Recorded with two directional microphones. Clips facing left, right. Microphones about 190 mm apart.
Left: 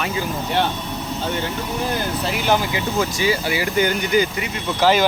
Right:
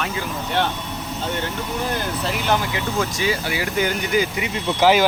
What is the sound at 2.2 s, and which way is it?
Speech, 5° left (ahead or behind).